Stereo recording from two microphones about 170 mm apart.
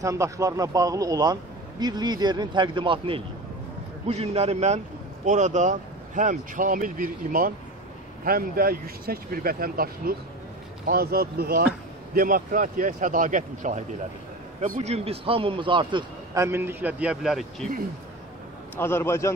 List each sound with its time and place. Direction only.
0.0 s a man's voice: 20° right (ahead or behind)
16.4 s a man's voice: 15° right (ahead or behind)
18.8 s a man's voice: 15° left (ahead or behind)